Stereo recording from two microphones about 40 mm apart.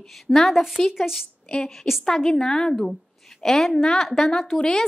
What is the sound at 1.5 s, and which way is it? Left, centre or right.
Speech, left.